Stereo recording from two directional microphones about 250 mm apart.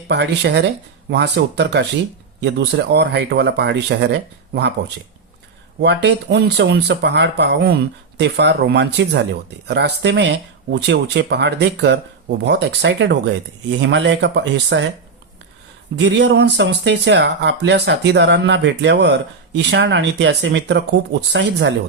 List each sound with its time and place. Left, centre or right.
0.1 s speech: right
5.8 s speech: right
16.0 s speech: right